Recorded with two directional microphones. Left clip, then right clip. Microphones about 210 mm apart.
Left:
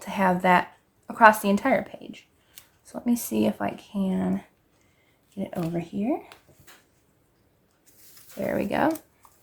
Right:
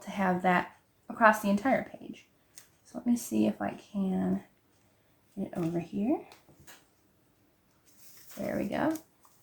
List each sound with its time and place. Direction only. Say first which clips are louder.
0.0 s speech: left 6 dB; 45° left (ahead or behind)
2.8 s speech: left 4 dB; 40° left (ahead or behind)
5.4 s speech: left 3 dB; 40° left (ahead or behind)
8.4 s speech: left 7 dB; 45° left (ahead or behind)